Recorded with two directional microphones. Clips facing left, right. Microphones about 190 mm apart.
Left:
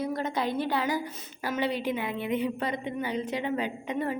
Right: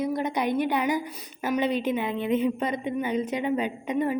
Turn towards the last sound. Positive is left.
turn(degrees=-15)  # may be behind; listen again after turning